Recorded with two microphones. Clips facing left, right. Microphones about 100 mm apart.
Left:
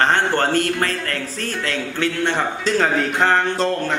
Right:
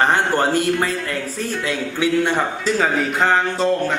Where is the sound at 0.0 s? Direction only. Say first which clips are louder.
Right 1 dB; 10° right (ahead or behind).